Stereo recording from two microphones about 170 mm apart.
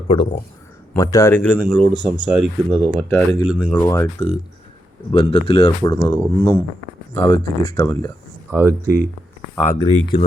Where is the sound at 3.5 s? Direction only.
10° left (ahead or behind).